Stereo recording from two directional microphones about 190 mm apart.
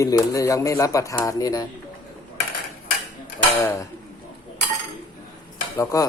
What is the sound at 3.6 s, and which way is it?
Speech, 15° left (ahead or behind).